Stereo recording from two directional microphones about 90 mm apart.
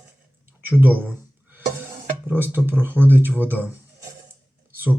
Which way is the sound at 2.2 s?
25° right (ahead or behind).